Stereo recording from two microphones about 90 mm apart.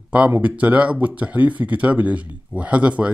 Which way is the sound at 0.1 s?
15° right (ahead or behind).